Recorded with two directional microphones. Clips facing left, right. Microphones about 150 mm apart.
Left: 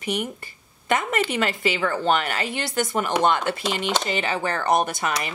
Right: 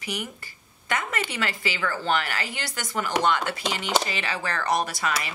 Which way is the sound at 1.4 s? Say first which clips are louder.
Left 5 dB; 25° left (ahead or behind).